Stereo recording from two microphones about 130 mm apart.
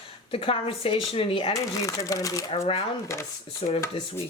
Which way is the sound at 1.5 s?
25° left (ahead or behind).